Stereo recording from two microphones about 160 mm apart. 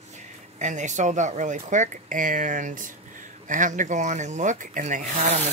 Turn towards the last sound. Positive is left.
turn(degrees=-50)  # may be behind; listen again after turning